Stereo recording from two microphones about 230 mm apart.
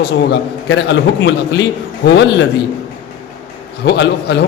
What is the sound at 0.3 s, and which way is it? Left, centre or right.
A man's voice, left.